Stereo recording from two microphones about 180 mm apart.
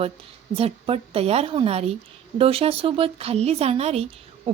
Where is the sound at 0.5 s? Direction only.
35° right (ahead or behind).